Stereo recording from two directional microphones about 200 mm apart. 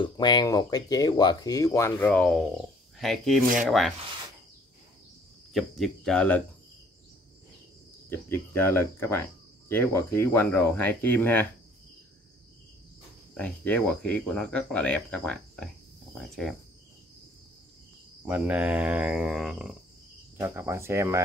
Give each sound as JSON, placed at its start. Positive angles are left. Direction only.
{"t": 0.0, "sound": "speech", "side_deg": 20}
{"t": 5.5, "sound": "speech", "side_deg": 0}
{"t": 8.1, "sound": "speech", "side_deg": 10}
{"t": 13.4, "sound": "speech", "side_deg": 5}
{"t": 18.2, "sound": "speech", "side_deg": -5}